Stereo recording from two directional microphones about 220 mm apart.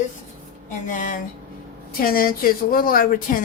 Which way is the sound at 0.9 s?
35° left (ahead or behind).